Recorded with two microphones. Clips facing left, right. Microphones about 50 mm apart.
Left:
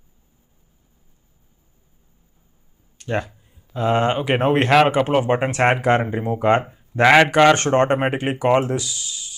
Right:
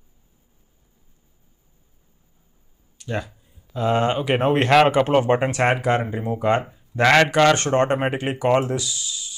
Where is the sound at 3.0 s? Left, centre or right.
Left.